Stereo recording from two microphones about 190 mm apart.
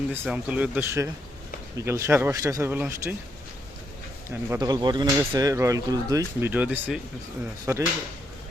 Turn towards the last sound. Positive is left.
turn(degrees=-15)  # may be behind; listen again after turning